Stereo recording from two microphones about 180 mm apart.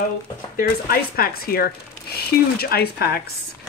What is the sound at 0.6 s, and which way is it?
Speech, 55° left (ahead or behind).